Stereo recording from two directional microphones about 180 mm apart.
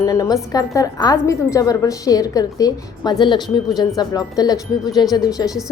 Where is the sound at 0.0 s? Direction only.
20° left (ahead or behind).